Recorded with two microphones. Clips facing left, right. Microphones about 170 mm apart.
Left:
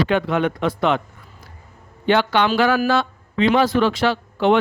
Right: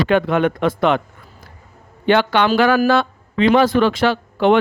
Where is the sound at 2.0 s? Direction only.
60° right (ahead or behind).